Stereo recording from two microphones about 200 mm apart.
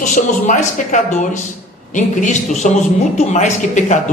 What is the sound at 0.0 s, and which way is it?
A man's voice, 40° left (ahead or behind).